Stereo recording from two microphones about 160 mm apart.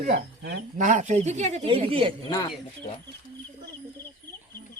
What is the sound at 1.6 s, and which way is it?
Speech, 35° right (ahead or behind).